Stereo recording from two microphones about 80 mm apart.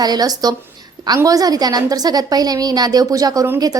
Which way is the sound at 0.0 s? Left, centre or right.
Right.